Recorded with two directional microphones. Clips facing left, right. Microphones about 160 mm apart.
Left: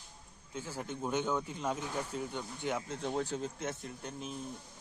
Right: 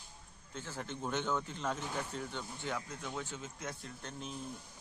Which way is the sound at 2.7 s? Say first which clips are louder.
Left 8 dB; 30° left (ahead or behind).